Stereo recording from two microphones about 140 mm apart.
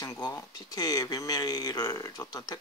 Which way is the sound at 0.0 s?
25° left (ahead or behind).